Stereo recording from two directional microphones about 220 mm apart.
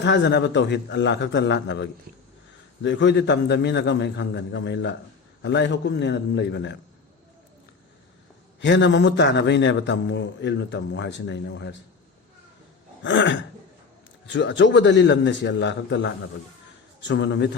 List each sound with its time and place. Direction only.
0.0 s a man's voice: 50° left (ahead or behind)
8.6 s a man's voice: 55° left (ahead or behind)
13.0 s a sound: 55° left (ahead or behind)
14.3 s a man's voice: 55° left (ahead or behind)